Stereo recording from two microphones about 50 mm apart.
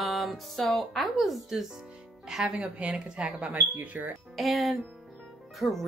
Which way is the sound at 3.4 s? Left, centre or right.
Right.